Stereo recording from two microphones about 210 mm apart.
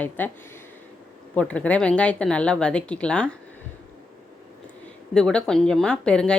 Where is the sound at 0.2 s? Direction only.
10° left (ahead or behind).